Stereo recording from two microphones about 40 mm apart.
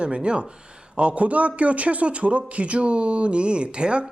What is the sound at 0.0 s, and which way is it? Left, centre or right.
A man's voice, right.